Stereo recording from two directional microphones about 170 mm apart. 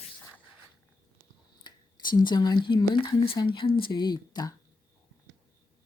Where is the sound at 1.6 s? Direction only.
25° left (ahead or behind).